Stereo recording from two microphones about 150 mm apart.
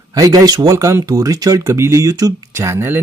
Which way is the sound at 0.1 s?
25° right (ahead or behind).